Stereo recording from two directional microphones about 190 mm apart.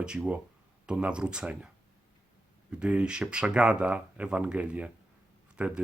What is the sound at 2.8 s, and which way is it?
Speech, 5° right (ahead or behind).